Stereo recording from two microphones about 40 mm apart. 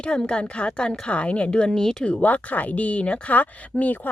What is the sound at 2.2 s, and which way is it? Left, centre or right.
Speech, left.